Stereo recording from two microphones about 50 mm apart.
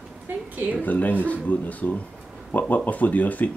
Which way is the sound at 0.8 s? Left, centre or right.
Left.